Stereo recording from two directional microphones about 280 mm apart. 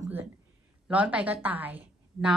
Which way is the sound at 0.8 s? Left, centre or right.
Centre.